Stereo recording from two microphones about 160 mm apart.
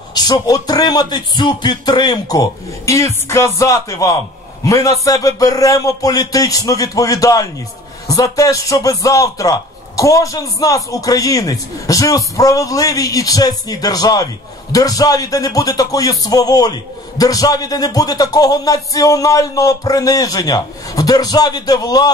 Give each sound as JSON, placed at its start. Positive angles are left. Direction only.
{"t": 0.1, "sound": "a man's voice", "side_deg": 25}